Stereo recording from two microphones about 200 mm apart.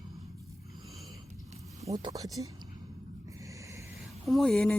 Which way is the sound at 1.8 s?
15° right (ahead or behind).